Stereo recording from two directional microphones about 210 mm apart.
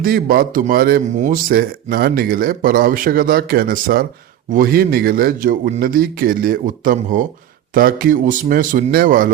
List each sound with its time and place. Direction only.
0.0 s speech: 45° right (ahead or behind)